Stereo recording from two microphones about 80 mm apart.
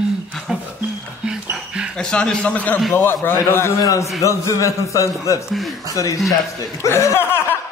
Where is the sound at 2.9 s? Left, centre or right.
Left.